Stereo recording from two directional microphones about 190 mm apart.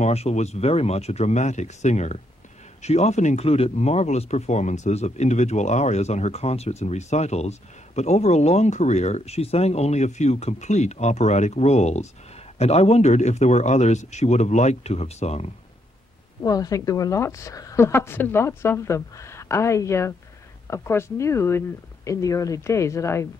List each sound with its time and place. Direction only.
0.0 s speech: 35° left (ahead or behind)
16.4 s a woman's voice: 20° left (ahead or behind)